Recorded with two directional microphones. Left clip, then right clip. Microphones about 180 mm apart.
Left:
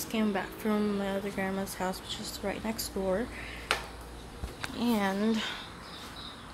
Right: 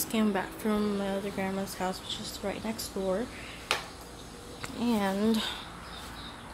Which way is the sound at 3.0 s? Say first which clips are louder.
Even; 20° left (ahead or behind).